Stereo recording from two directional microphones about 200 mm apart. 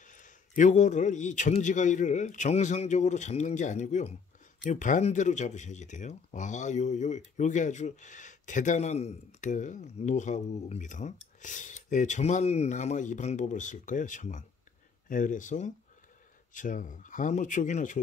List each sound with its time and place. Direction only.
0.0 s speech: 40° left (ahead or behind)